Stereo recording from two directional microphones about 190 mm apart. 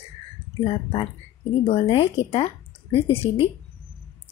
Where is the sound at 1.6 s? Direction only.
30° left (ahead or behind).